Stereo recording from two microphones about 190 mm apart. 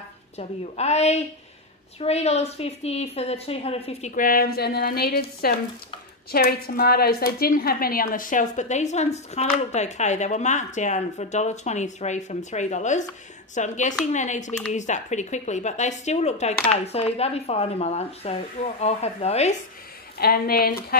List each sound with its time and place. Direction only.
0.4 s speech: 35° left (ahead or behind)
4.1 s a woman's voice: 50° left (ahead or behind)
20.2 s speech: 55° left (ahead or behind)